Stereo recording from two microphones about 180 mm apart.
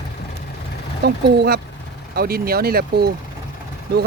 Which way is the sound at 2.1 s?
60° right (ahead or behind).